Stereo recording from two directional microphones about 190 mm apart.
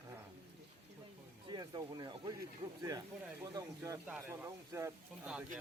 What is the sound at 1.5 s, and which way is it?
Speech, 20° right (ahead or behind).